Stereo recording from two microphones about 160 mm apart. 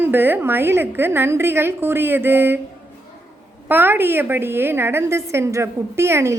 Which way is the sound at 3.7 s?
10° right (ahead or behind).